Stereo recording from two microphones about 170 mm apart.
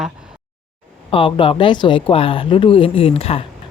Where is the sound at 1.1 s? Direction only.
30° left (ahead or behind).